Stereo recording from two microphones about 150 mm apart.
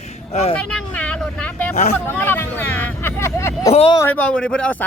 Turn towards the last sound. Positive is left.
turn(degrees=5)  # may be behind; listen again after turning